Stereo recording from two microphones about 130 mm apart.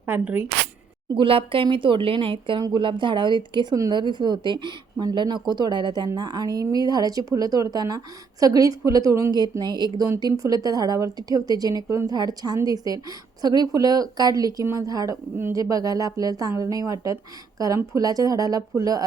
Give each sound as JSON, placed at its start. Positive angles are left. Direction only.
{"t": 0.0, "sound": "speech", "side_deg": -15}
{"t": 1.1, "sound": "a woman's voice", "side_deg": -45}